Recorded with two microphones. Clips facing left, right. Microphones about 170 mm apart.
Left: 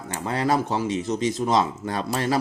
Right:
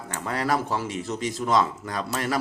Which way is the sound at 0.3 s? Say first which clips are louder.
Left 3 dB; 25° left (ahead or behind).